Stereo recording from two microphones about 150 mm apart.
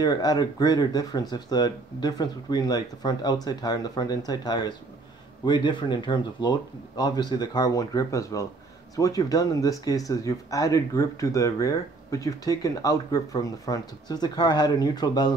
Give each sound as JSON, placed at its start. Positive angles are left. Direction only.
{"t": 0.0, "sound": "speech", "side_deg": 25}